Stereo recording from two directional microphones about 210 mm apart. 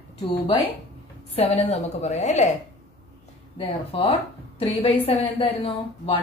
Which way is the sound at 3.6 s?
25° left (ahead or behind).